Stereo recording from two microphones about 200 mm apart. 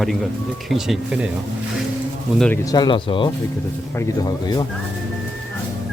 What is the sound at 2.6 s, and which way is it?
Speech, 20° left (ahead or behind).